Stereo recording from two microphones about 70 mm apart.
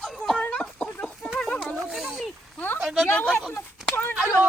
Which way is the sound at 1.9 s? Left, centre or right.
Centre.